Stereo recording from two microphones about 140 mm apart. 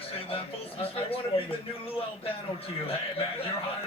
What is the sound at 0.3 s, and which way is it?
A man's voice, 40° left (ahead or behind).